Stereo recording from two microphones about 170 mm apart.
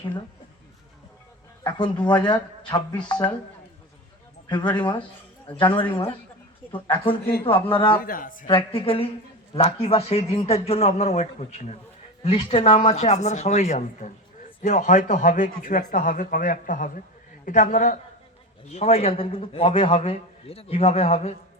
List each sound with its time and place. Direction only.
1.6 s speech: 25° left (ahead or behind)
4.4 s speech: 25° left (ahead or behind)
8.0 s speech: 55° left (ahead or behind)
8.4 s a man's voice: 30° left (ahead or behind)